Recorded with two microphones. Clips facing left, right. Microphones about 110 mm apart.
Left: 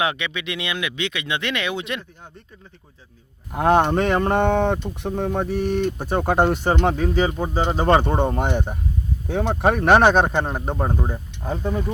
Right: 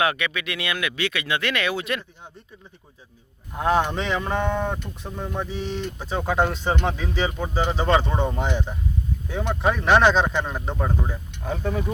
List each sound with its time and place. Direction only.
0.0 s speech: 20° left (ahead or behind)
3.5 s speech: 60° left (ahead or behind); by 10.8 s 45° left (ahead or behind)
10.8 s speech: 25° left (ahead or behind)
11.4 s speech: 15° left (ahead or behind)